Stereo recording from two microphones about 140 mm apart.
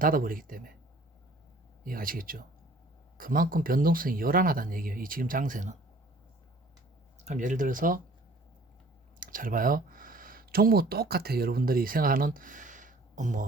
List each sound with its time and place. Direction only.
0.0 s speech: 90° right
1.8 s speech: 90° right; by 5.7 s 70° right (ahead or behind)
7.2 s speech: 60° right (ahead or behind); by 8.0 s 75° right (ahead or behind)
9.2 s speech: 80° right